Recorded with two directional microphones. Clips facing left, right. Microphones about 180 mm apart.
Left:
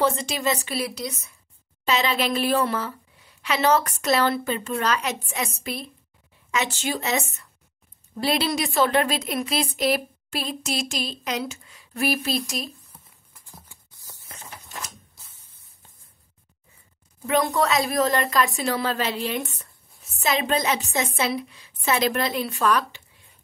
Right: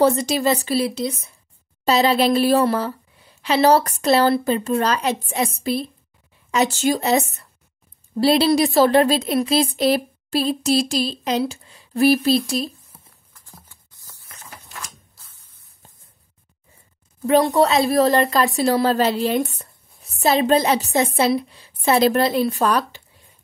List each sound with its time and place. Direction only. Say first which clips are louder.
0.0 s a woman's voice: right 6 dB; 40° right (ahead or behind)
13.4 s patter: even; 10° left (ahead or behind)
17.3 s a woman's voice: right 6 dB; 35° right (ahead or behind)